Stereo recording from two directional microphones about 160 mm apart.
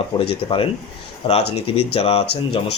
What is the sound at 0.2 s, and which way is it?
Speech, 35° left (ahead or behind).